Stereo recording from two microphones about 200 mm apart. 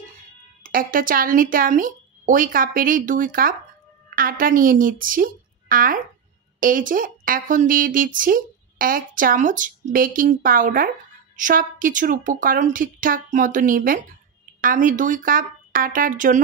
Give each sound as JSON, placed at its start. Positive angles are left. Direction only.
{"t": 0.7, "sound": "a woman's voice", "side_deg": -45}